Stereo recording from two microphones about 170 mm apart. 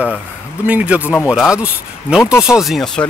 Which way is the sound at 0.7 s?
10° right (ahead or behind).